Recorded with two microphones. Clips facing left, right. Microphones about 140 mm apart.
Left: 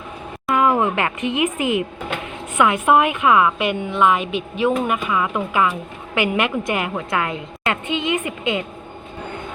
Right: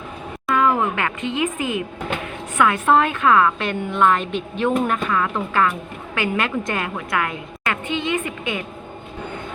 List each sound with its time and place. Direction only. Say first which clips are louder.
0.4 s a woman's voice: left 2 dB; 20° left (ahead or behind)